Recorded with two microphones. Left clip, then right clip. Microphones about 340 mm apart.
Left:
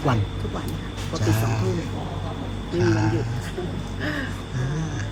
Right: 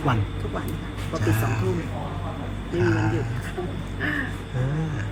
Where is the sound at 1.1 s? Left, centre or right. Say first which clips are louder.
Even; centre.